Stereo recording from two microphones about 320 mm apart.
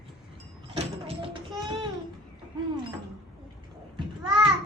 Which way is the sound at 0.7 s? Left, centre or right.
Centre.